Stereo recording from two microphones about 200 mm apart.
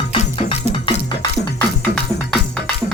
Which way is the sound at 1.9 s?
5° left (ahead or behind).